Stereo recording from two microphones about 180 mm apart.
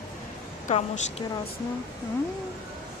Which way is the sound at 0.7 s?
40° left (ahead or behind).